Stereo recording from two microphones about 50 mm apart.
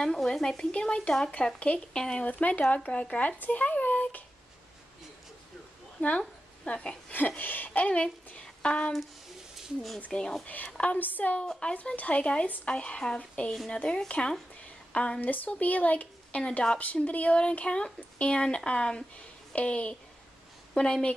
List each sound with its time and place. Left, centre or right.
0.0 s speech: centre; by 4.2 s left
5.9 s speech: left
7.1 s speech: left
7.8 s speech: left
10.1 s speech: centre
10.4 s speech: left
11.3 s speech: centre
11.7 s speech: left